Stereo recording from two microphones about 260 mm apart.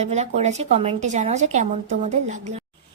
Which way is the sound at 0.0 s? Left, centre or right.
Right.